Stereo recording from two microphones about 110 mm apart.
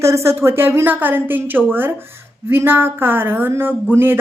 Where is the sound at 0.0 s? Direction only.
25° right (ahead or behind).